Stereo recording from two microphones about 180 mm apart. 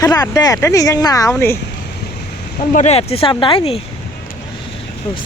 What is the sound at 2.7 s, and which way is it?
Speech, 40° left (ahead or behind).